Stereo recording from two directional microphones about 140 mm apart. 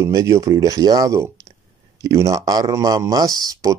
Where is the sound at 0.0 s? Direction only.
20° right (ahead or behind).